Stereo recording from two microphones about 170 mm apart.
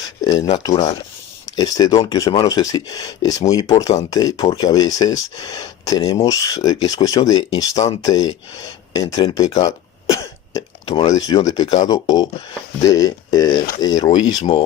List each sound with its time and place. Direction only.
0.6 s speech: 25° left (ahead or behind)
6.0 s speech: 35° left (ahead or behind)
6.3 s speech: 20° left (ahead or behind)
9.6 s throat clearing: 20° left (ahead or behind)
10.8 s speech: 25° left (ahead or behind)